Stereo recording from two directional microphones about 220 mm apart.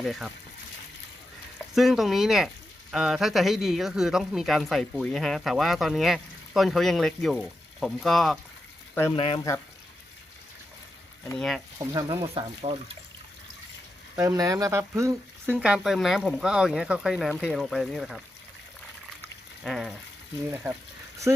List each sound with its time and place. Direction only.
0.0 s speech: centre (ahead or behind)
1.5 s speech: centre (ahead or behind)
9.1 s speech: 25° left (ahead or behind)
11.3 s speech: centre (ahead or behind)
11.9 s speech: 20° right (ahead or behind)
14.2 s speech: 15° right (ahead or behind)
19.6 s speech: centre (ahead or behind)